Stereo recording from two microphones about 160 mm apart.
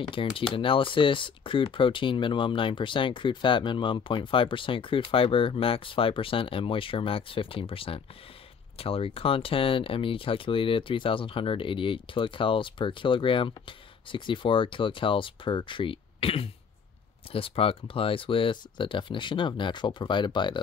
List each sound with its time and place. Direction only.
0.0 s speech: 35° left (ahead or behind)